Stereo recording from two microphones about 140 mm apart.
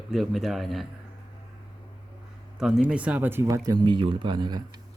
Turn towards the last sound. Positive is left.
turn(degrees=-30)  # may be behind; listen again after turning